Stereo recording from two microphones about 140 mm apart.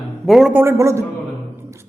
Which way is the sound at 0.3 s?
5° right (ahead or behind).